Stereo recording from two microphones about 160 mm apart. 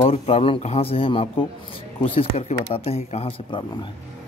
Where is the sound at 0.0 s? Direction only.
40° left (ahead or behind).